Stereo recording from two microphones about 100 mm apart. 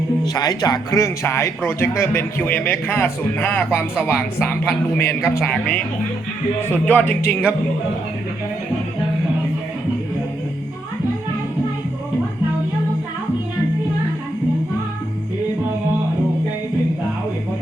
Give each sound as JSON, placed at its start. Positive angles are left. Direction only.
{"t": 0.3, "sound": "speech", "side_deg": 40}